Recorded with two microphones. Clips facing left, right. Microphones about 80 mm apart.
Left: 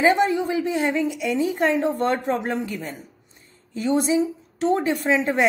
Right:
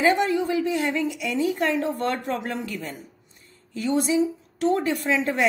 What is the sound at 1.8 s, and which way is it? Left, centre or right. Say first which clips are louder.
Speech: left 4 dB; left.